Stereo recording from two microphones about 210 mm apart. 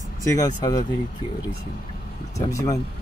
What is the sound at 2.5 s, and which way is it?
Speech, 15° left (ahead or behind).